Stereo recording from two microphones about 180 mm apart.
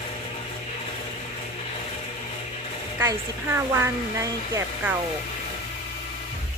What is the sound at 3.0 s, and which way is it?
Speech, 15° right (ahead or behind).